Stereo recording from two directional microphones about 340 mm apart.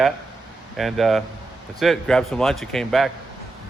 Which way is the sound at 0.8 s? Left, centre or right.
Centre.